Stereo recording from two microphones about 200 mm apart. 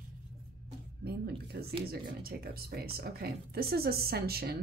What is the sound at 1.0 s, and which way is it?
A woman's voice, 55° right (ahead or behind).